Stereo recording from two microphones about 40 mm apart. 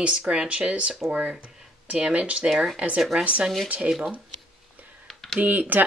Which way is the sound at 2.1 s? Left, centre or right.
Right.